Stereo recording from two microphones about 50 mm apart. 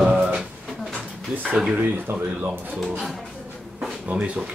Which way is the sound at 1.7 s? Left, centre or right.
Right.